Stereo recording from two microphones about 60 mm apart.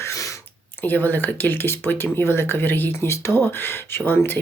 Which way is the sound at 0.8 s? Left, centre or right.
Left.